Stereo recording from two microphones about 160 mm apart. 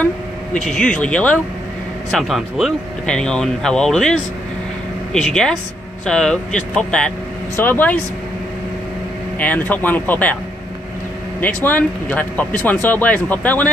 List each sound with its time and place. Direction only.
0.0 s speech: 5° left (ahead or behind)
5.1 s speech: 5° left (ahead or behind)
9.4 s speech: 10° left (ahead or behind)
11.4 s speech: 10° left (ahead or behind)